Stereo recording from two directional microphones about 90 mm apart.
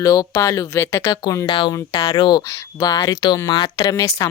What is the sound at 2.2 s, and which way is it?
Speech, 55° left (ahead or behind).